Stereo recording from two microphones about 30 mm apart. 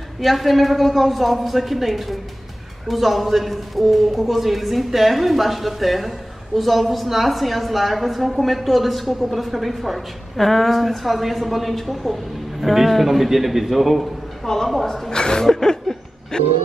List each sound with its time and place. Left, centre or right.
0.2 s a woman's voice: centre
14.4 s a woman's voice: centre
14.9 s a woman's voice: left
15.5 s a sound: left
16.3 s a woman's voice: left